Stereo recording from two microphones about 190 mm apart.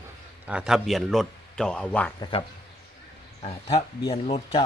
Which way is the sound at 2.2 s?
30° left (ahead or behind).